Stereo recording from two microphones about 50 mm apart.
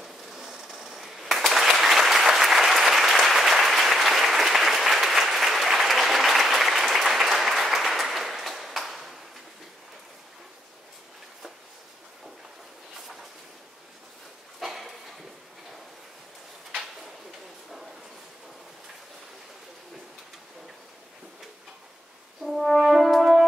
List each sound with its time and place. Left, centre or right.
0.0 s applause: centre
14.6 s a sound: centre
22.4 s french horn: centre